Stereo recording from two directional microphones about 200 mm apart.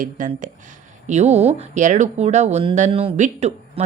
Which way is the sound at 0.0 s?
40° right (ahead or behind).